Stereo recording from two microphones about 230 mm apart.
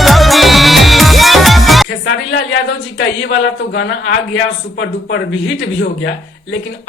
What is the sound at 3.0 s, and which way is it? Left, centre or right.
A man's voice, left.